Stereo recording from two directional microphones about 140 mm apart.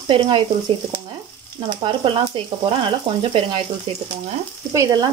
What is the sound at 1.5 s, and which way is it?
Frying, 35° right (ahead or behind).